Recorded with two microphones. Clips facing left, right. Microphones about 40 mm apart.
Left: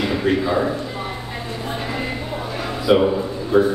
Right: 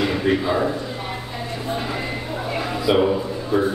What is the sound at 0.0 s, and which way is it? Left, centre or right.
Speech, centre.